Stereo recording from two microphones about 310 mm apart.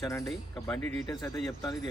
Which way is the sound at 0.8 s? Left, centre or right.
Right.